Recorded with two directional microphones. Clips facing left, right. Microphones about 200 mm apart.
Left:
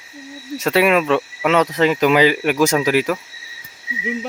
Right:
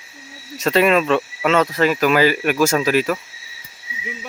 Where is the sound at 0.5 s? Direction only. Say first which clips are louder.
Even; 10° left (ahead or behind).